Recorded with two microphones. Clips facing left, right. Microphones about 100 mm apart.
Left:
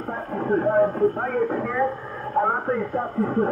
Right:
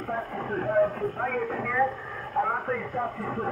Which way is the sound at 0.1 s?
30° left (ahead or behind).